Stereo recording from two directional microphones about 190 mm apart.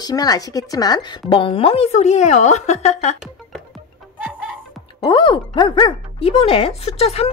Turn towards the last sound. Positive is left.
turn(degrees=35)  # may be behind; listen again after turning